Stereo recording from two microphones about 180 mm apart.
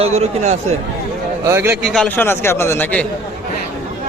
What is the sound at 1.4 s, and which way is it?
Speech, 15° right (ahead or behind).